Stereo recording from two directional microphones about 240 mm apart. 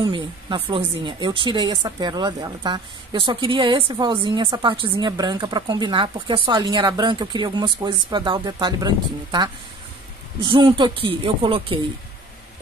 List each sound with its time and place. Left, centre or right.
0.0 s a woman's voice: centre